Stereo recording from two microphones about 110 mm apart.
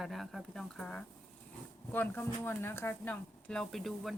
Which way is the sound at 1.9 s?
20° left (ahead or behind).